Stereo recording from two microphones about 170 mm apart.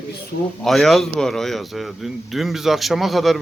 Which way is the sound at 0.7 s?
Centre (ahead or behind).